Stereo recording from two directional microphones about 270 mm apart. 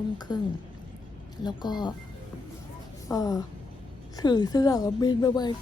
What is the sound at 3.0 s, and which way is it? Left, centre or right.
Speech, centre.